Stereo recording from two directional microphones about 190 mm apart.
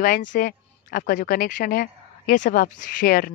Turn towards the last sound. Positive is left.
turn(degrees=45)  # may be behind; listen again after turning